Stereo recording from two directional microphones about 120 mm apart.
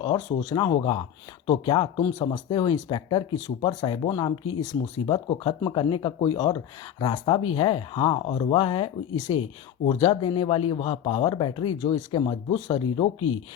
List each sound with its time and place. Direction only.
0.0 s speech: 35° left (ahead or behind)